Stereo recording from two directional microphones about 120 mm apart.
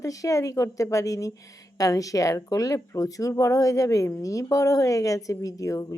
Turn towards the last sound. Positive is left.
turn(degrees=25)  # may be behind; listen again after turning